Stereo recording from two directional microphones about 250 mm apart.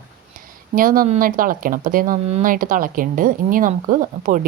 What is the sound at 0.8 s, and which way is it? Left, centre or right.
Speech, right.